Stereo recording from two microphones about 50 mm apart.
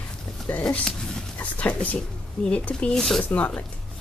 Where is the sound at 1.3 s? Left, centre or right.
Left.